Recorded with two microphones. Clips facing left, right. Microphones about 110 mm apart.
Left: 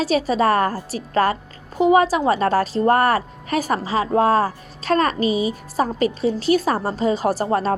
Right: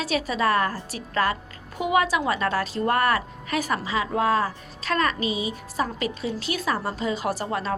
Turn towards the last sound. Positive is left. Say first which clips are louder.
# left 7 dB
turn(degrees=40)  # may be behind; listen again after turning